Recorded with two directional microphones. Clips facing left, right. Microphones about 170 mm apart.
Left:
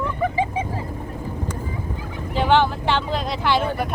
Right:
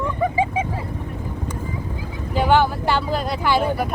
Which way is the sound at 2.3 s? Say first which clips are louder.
Right 1 dB; 10° right (ahead or behind).